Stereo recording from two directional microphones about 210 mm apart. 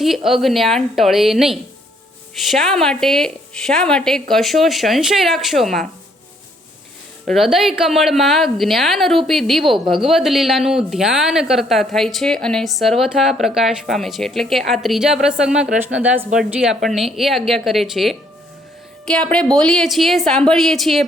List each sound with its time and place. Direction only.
0.3 s speech: centre (ahead or behind)
7.3 s speech: centre (ahead or behind)